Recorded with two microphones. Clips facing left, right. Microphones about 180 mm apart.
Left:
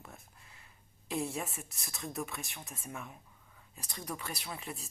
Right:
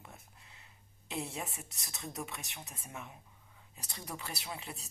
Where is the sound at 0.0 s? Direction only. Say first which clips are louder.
Left 2 dB; 25° right (ahead or behind).